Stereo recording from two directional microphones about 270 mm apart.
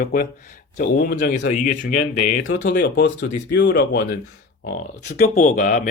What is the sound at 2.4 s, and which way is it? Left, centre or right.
Speech, left.